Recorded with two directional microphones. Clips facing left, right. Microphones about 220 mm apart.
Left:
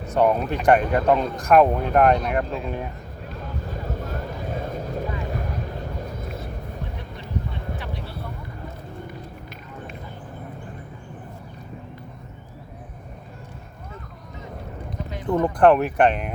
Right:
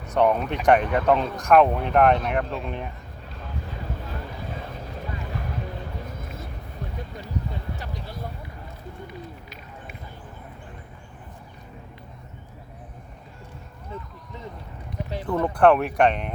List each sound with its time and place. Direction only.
0.1 s speech: 5° left (ahead or behind)
4.0 s vehicle: 45° left (ahead or behind)
15.3 s speech: 20° left (ahead or behind)
15.6 s speech: 5° left (ahead or behind)